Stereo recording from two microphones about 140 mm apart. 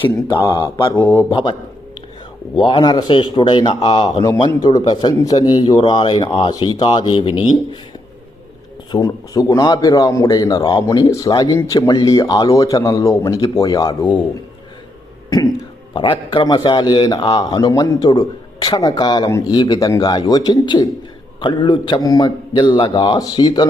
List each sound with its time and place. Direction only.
0.0 s a man's voice: 35° left (ahead or behind)
0.9 s speech: 15° left (ahead or behind)
1.3 s a man's voice: 35° left (ahead or behind)
2.6 s a man's voice: 30° left (ahead or behind)
8.9 s a man's voice: 25° left (ahead or behind)
15.3 s a man's voice: 25° left (ahead or behind)